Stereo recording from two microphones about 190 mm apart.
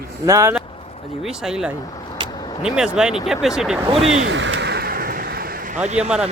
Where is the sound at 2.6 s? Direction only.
5° right (ahead or behind).